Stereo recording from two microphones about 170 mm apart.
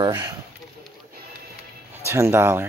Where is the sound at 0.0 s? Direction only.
25° right (ahead or behind).